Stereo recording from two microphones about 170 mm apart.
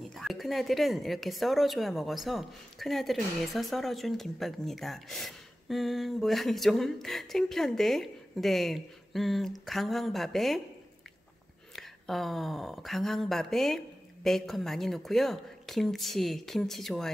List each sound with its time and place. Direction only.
0.0 s a woman's voice: centre (ahead or behind)
11.7 s a woman's voice: centre (ahead or behind)